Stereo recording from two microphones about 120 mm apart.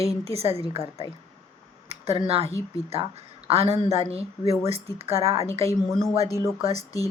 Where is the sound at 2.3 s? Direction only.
55° right (ahead or behind).